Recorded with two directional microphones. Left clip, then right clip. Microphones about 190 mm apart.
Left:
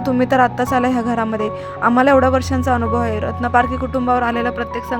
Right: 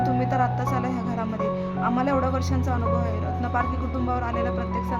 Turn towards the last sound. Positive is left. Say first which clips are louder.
# left 9 dB
turn(degrees=35)  # may be behind; listen again after turning